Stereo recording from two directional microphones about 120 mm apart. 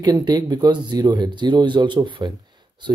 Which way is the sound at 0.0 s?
35° right (ahead or behind).